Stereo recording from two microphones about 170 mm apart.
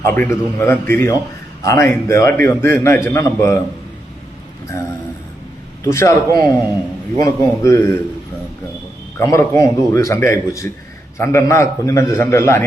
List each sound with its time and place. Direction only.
0.0 s a man's voice: 15° left (ahead or behind)
5.8 s a man's voice: 20° left (ahead or behind)
9.1 s a man's voice: 15° left (ahead or behind)